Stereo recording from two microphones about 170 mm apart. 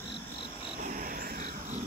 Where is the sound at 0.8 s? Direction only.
55° right (ahead or behind).